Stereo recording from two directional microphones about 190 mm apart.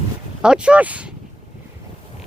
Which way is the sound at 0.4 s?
5° right (ahead or behind).